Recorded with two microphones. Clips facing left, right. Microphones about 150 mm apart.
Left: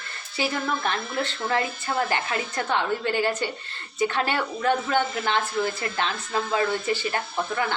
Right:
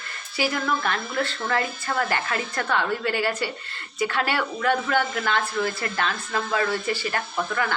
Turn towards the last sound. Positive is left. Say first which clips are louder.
# even
turn(degrees=25)  # may be behind; listen again after turning